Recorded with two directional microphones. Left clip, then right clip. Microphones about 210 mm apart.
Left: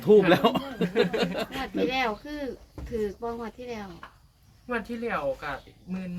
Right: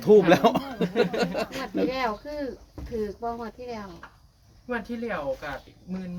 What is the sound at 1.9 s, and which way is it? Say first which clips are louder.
Speech: even; 35° left (ahead or behind).